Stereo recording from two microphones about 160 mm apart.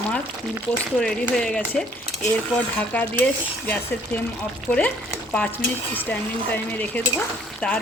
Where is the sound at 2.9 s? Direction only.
10° left (ahead or behind).